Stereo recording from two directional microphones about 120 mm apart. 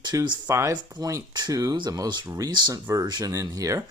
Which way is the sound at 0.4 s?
25° right (ahead or behind).